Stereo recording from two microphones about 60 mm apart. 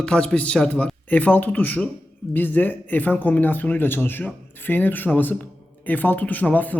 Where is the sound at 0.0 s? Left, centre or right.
Centre.